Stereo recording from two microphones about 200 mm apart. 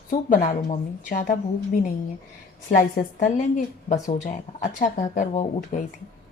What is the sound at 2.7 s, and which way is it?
Speech, 40° left (ahead or behind).